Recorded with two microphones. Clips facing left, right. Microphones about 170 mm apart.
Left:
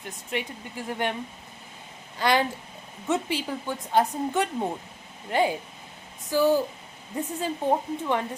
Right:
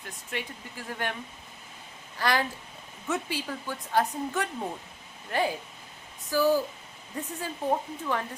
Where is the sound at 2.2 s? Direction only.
20° left (ahead or behind).